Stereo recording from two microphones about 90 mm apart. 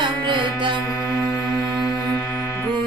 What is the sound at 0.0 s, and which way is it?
Music, 60° right (ahead or behind).